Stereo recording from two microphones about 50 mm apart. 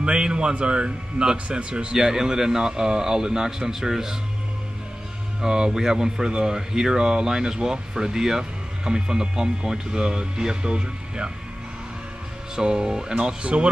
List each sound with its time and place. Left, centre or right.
0.0 s speech: centre
2.0 s speech: centre
5.4 s speech: centre
12.5 s speech: centre